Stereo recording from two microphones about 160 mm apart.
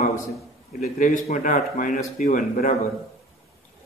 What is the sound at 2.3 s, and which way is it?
Speech, 60° left (ahead or behind).